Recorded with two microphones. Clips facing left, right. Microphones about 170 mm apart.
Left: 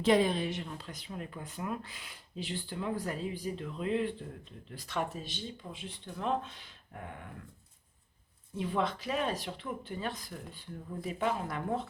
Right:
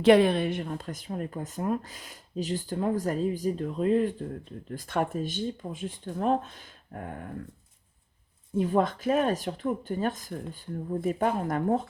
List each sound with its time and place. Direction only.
0.0 s speech: 65° right (ahead or behind); by 7.3 s 45° right (ahead or behind)
8.5 s speech: 45° right (ahead or behind)